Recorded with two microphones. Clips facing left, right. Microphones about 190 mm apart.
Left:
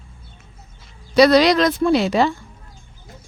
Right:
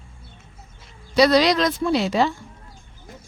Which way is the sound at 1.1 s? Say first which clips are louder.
Left 4 dB; 60° left (ahead or behind).